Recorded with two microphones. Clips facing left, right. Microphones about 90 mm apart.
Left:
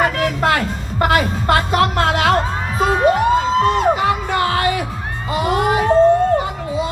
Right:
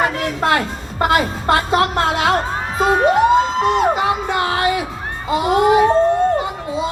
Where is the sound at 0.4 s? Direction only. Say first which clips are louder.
Even; 25° right (ahead or behind).